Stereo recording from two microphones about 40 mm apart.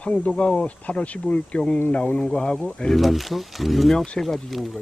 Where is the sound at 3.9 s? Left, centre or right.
Left.